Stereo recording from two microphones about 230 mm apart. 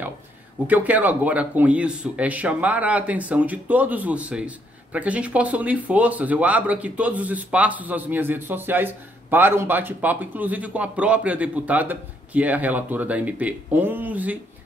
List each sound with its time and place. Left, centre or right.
0.7 s speech: centre